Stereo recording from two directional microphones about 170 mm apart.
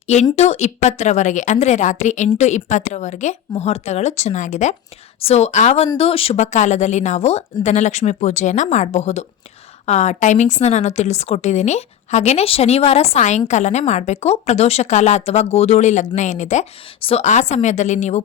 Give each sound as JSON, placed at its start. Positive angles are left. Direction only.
{"t": 0.3, "sound": "a woman's voice", "side_deg": 40}